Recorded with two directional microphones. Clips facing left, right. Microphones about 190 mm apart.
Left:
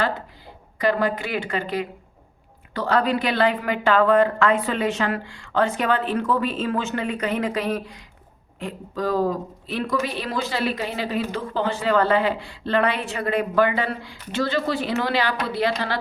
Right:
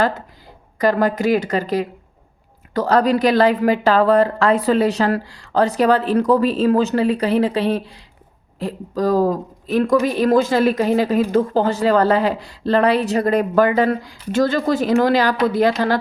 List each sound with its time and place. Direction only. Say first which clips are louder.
0.8 s a woman's voice: right 5 dB; 40° right (ahead or behind)